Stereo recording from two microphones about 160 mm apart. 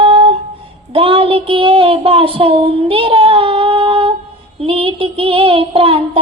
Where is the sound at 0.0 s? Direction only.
35° right (ahead or behind).